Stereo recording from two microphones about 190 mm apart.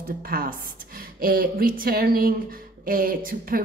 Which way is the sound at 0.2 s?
50° right (ahead or behind).